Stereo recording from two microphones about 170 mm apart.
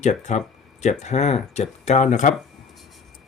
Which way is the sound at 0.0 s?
45° left (ahead or behind).